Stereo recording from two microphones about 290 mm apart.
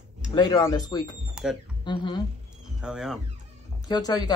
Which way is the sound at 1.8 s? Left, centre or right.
Centre.